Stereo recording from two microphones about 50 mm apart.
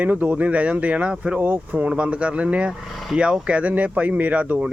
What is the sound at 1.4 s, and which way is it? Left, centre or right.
Speech, right.